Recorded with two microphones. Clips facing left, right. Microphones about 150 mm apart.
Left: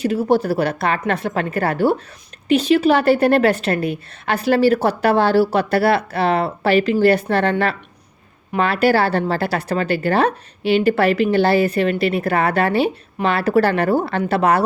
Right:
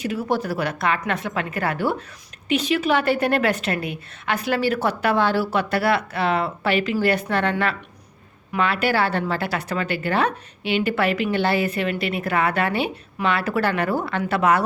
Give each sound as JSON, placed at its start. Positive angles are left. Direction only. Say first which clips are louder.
{"t": 0.0, "sound": "a woman's voice", "louder": "left 7 dB", "side_deg": 30}